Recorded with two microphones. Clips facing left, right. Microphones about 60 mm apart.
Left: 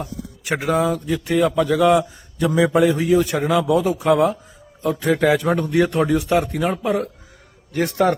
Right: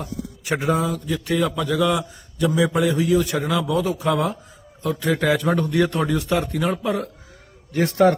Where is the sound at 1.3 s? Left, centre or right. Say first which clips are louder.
Left 4 dB; left.